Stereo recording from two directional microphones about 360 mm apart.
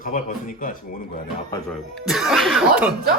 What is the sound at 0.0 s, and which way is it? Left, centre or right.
Speech, left.